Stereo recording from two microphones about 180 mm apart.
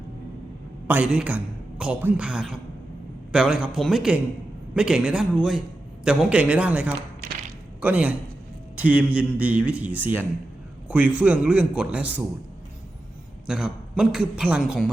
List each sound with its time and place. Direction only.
0.9 s a man's voice: 10° right (ahead or behind)
13.5 s a man's voice: 5° right (ahead or behind)